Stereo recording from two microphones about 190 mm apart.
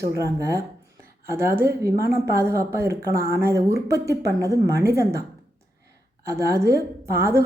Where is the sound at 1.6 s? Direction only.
55° right (ahead or behind).